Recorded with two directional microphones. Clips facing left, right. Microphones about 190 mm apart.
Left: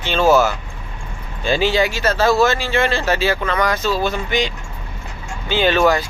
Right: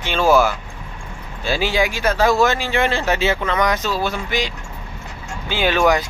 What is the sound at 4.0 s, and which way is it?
Speech, 10° right (ahead or behind).